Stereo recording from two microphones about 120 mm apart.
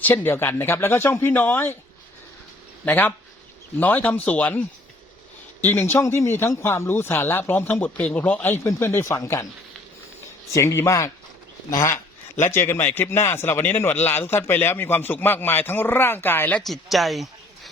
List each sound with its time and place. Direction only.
0.0 s speech: 15° left (ahead or behind)
2.8 s a man's voice: 15° left (ahead or behind)
5.6 s speech: 20° left (ahead or behind)
10.5 s a man's voice: 25° left (ahead or behind)
16.6 s speech: centre (ahead or behind)